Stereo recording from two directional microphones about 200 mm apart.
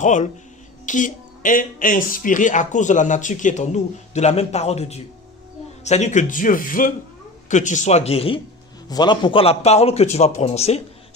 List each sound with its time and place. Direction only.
0.0 s speech: 40° left (ahead or behind)